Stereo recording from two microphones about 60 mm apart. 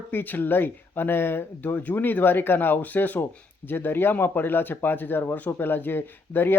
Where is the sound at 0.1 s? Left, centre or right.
Left.